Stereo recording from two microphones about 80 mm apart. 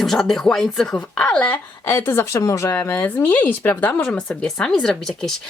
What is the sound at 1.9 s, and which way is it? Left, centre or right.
Speech, left.